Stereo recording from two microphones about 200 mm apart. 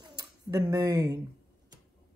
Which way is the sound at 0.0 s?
20° right (ahead or behind).